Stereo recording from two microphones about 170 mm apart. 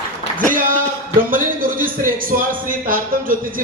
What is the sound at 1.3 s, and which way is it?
Speech, 55° right (ahead or behind).